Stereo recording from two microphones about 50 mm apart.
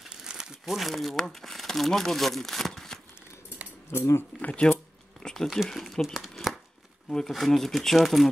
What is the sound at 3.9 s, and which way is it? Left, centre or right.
Speech, left.